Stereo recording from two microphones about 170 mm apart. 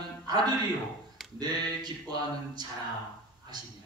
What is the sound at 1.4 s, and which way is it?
Speech, 25° right (ahead or behind).